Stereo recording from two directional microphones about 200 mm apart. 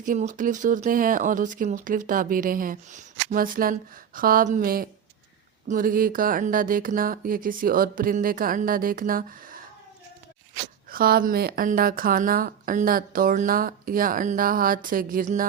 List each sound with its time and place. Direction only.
0.0 s speech: 40° right (ahead or behind)
10.8 s speech: 45° right (ahead or behind)